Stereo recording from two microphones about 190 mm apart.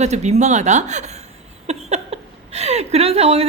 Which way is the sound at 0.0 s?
35° right (ahead or behind).